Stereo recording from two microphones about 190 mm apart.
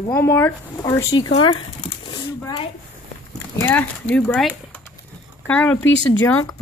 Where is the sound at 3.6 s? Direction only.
10° left (ahead or behind).